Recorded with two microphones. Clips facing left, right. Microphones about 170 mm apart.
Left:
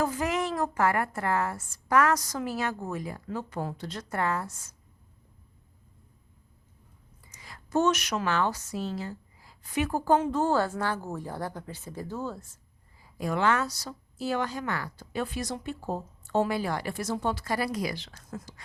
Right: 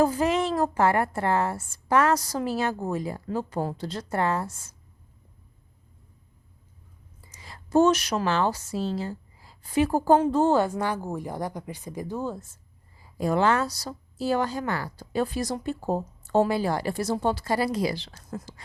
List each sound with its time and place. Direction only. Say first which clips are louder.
0.0 s a woman's voice: right 5 dB; 30° right (ahead or behind)
7.3 s a woman's voice: right 6 dB; 30° right (ahead or behind)
13.1 s speech: right 4 dB; 35° right (ahead or behind)